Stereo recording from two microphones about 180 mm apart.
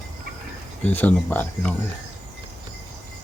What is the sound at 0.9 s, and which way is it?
Speech, 10° left (ahead or behind).